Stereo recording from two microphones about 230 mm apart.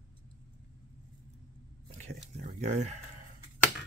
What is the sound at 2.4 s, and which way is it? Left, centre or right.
Speech, right.